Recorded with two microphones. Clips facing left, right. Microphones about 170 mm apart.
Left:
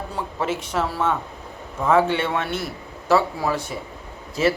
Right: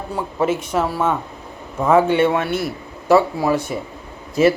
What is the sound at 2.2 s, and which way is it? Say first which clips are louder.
A man's voice: right 7 dB; 10° right (ahead or behind).